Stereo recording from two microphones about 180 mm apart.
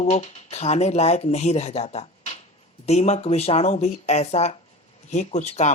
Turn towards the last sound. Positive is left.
turn(degrees=40)  # may be behind; listen again after turning